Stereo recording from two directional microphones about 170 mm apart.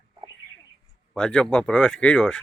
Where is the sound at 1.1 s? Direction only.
5° left (ahead or behind).